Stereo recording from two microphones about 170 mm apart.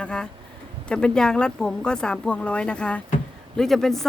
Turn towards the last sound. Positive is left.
turn(degrees=0)  # may be behind; listen again after turning